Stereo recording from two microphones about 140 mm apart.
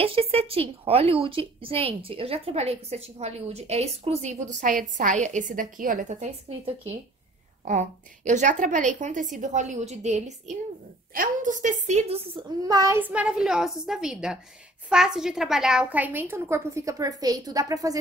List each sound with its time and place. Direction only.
0.0 s a woman's voice: 45° right (ahead or behind)
12.6 s a woman's voice: 25° right (ahead or behind)